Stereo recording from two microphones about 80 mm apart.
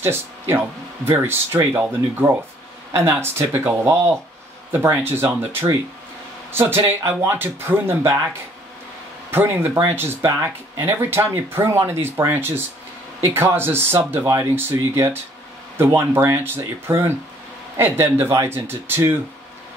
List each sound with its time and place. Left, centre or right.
0.0 s speech: right
2.9 s speech: right
9.3 s speech: right